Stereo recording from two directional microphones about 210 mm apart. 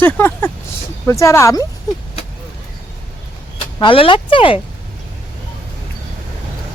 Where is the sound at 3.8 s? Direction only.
25° left (ahead or behind).